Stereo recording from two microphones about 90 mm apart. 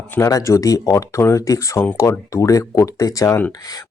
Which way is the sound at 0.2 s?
40° left (ahead or behind).